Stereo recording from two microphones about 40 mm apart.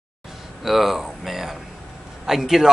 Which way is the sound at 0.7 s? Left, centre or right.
Centre.